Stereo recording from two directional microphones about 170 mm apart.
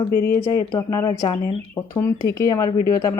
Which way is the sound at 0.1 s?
65° left (ahead or behind).